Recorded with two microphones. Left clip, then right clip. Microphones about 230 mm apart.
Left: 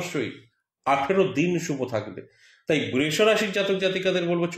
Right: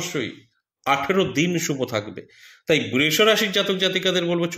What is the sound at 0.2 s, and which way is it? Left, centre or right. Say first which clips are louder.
Speech: right 2 dB; right.